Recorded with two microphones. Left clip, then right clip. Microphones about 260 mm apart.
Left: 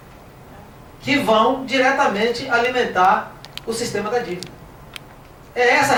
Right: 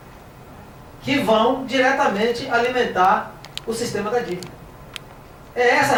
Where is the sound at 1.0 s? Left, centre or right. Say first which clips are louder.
Left 2 dB; centre.